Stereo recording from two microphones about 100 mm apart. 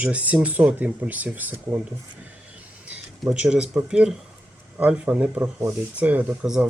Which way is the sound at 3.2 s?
10° right (ahead or behind).